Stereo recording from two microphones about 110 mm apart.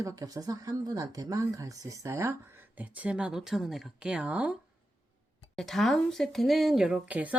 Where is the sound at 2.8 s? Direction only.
15° right (ahead or behind).